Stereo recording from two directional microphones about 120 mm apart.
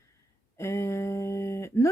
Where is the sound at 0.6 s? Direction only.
25° left (ahead or behind).